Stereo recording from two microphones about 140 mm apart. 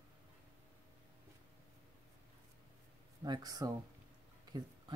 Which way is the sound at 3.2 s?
30° right (ahead or behind).